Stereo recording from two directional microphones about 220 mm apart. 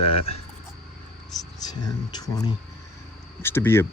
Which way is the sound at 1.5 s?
15° left (ahead or behind).